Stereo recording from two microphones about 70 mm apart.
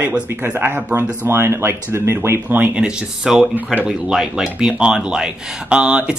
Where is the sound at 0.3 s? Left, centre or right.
Right.